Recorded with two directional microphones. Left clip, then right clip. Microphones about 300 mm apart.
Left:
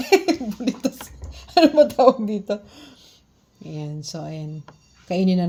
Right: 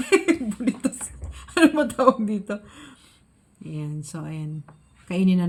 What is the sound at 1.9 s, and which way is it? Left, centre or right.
Speech, left.